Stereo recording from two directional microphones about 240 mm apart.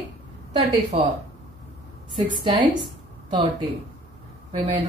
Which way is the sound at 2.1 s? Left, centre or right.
Centre.